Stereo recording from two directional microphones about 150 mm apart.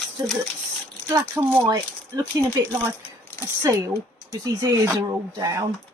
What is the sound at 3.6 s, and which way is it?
Speech, 25° right (ahead or behind).